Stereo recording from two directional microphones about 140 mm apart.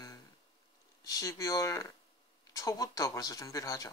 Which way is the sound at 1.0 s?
25° left (ahead or behind).